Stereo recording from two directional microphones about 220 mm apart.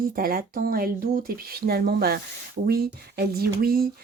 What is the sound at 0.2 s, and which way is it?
Speech, 40° right (ahead or behind).